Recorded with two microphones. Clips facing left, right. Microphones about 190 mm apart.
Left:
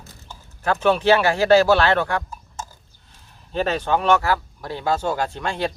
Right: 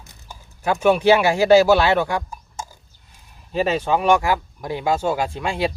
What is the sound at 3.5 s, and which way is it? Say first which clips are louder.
Speech: right 2 dB; 10° right (ahead or behind).